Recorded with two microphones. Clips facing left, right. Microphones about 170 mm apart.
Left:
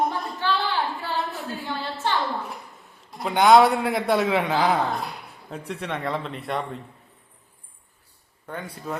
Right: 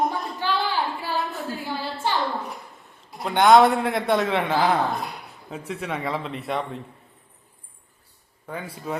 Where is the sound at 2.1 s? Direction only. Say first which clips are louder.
Even; 10° right (ahead or behind).